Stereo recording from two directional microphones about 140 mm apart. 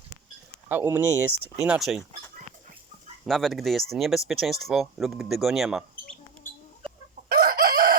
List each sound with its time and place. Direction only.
0.7 s speech: 15° right (ahead or behind)
3.2 s speech: centre (ahead or behind)
7.3 s chicken: 90° right